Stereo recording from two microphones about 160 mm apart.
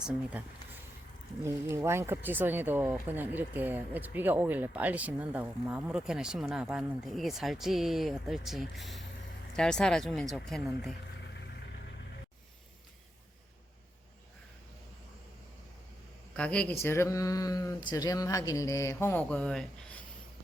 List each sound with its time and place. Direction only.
0.0 s speech: 5° right (ahead or behind)
1.5 s speech: 15° right (ahead or behind)
16.3 s speech: 5° left (ahead or behind)